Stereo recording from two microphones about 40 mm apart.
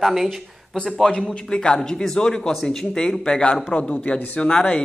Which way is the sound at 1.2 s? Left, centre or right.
Left.